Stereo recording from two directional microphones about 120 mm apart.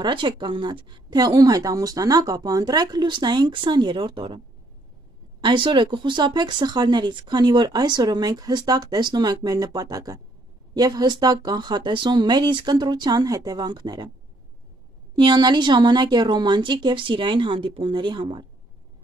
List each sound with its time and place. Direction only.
0.0 s speech: 40° right (ahead or behind)
5.4 s speech: 45° right (ahead or behind)
15.1 s speech: 35° right (ahead or behind)